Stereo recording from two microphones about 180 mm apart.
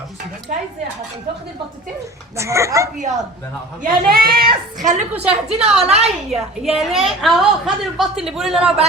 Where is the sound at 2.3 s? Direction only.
15° right (ahead or behind).